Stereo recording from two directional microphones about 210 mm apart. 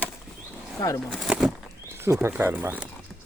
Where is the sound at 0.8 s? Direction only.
10° left (ahead or behind); by 2.9 s 5° right (ahead or behind).